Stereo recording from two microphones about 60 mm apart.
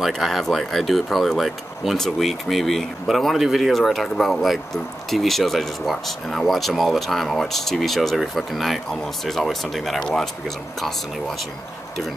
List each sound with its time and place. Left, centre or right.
0.0 s speech: centre